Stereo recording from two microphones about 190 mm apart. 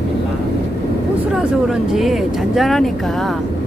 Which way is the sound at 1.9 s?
Centre (ahead or behind).